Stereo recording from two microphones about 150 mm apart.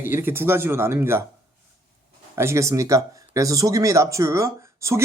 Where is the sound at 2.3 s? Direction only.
20° right (ahead or behind).